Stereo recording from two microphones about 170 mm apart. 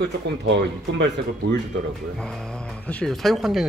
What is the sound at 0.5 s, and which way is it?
Speech, 90° right.